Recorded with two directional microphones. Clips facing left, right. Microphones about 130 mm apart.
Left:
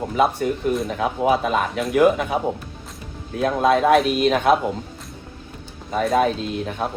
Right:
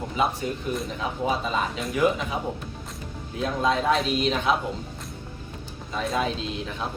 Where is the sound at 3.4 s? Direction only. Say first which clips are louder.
Left 7 dB; 60° left (ahead or behind).